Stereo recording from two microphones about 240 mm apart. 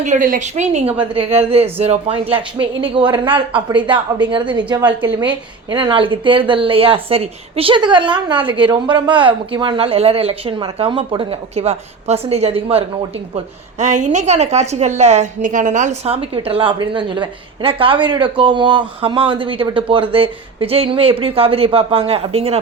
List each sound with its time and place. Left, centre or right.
0.0 s a woman's voice: right; by 5.0 s centre
5.7 s a woman's voice: right